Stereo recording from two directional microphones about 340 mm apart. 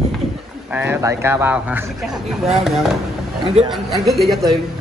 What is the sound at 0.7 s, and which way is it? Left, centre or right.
Speech, centre.